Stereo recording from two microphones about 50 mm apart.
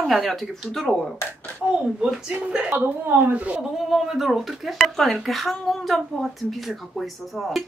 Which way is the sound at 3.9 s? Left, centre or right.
Centre.